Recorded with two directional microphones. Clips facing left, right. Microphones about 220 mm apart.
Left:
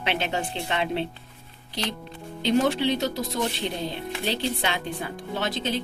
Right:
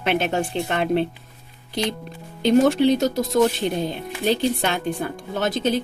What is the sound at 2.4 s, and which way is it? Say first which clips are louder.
Speech: right 6 dB; 45° right (ahead or behind).